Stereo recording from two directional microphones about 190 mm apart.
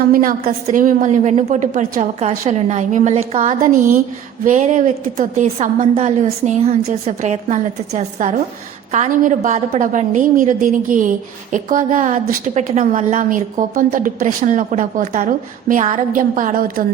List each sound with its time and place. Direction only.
0.1 s a woman's voice: 45° right (ahead or behind)